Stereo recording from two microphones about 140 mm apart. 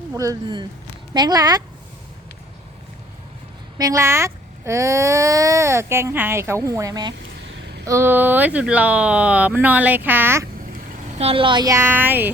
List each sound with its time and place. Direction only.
0.1 s speech: 20° right (ahead or behind)
3.8 s speech: 20° right (ahead or behind)
11.2 s a child's voice: 40° right (ahead or behind)
11.8 s speech: 15° right (ahead or behind)